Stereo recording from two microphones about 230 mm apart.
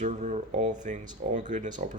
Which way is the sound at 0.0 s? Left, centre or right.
Right.